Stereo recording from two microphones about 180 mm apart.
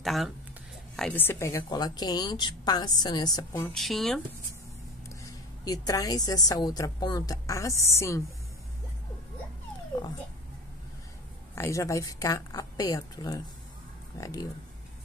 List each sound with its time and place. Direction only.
0.0 s a woman's voice: centre (ahead or behind); by 3.6 s 20° left (ahead or behind)
3.6 s speech: centre (ahead or behind)
5.2 s a woman's voice: 20° left (ahead or behind)
11.5 s a woman's voice: 15° left (ahead or behind)